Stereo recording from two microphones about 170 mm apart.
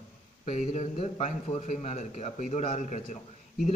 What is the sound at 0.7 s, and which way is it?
A man's voice, 45° left (ahead or behind).